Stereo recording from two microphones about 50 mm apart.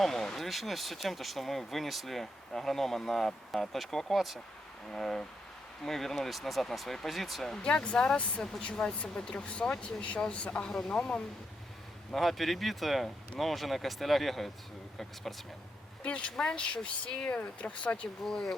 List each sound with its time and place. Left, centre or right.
0.0 s speech: centre
4.9 s speech: centre
7.4 s speech: centre
12.1 s speech: centre; by 18.1 s left
18.2 s speech: centre